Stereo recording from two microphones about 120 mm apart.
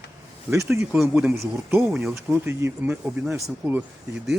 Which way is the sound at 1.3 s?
20° right (ahead or behind).